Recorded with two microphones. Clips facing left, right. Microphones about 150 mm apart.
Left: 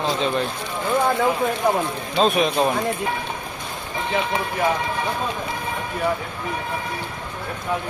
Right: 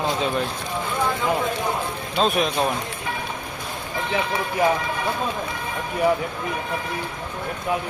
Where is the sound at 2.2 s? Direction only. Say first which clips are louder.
Left 2 dB; centre (ahead or behind).